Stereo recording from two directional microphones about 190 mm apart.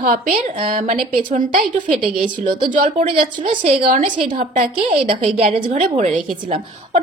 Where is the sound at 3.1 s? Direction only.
30° right (ahead or behind).